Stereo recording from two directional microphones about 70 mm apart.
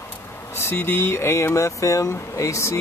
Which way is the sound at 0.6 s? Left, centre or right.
Left.